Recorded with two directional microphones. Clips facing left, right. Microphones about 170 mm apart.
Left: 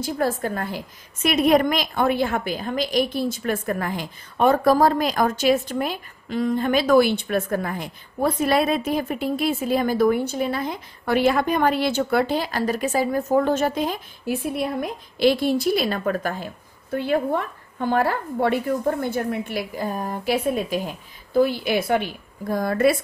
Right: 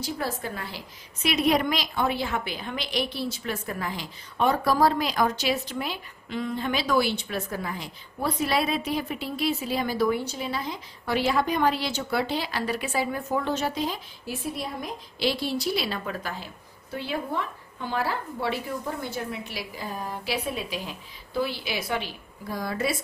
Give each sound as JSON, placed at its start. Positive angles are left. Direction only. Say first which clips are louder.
{"t": 0.0, "sound": "a woman's voice", "louder": "left 7 dB", "side_deg": 50}